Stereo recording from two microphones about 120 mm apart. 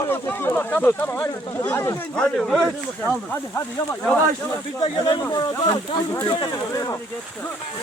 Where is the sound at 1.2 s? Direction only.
30° left (ahead or behind).